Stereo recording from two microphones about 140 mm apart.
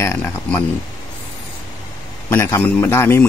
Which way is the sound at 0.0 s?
15° left (ahead or behind).